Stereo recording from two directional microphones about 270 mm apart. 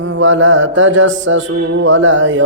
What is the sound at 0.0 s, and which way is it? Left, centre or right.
Mantra, right.